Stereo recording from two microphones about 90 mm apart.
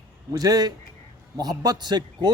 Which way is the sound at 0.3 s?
45° right (ahead or behind).